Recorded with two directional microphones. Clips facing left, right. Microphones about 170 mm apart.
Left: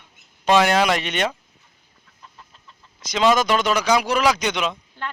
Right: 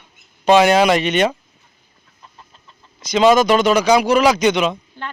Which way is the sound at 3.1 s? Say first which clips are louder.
Right 6 dB; 5° right (ahead or behind).